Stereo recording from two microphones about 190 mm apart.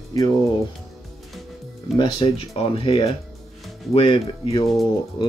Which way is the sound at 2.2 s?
30° left (ahead or behind).